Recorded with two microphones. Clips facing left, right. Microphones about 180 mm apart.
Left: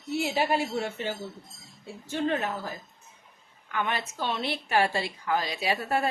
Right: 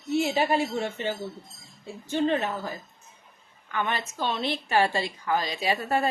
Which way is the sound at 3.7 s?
10° left (ahead or behind).